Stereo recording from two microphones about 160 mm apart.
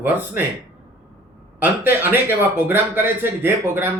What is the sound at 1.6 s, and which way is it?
A man's voice, 10° right (ahead or behind).